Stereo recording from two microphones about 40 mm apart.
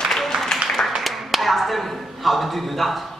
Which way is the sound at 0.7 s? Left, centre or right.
Centre.